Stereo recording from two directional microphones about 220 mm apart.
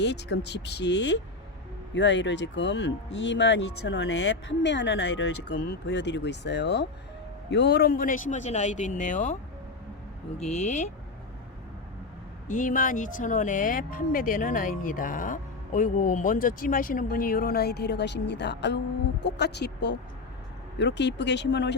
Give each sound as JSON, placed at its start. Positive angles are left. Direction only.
{"t": 0.0, "sound": "speech", "side_deg": 50}
{"t": 10.5, "sound": "speech", "side_deg": 30}
{"t": 12.5, "sound": "speech", "side_deg": 35}